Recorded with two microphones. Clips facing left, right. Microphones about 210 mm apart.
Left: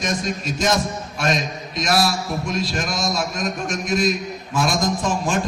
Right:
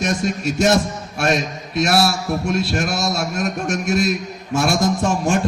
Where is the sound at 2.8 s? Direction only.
70° right (ahead or behind).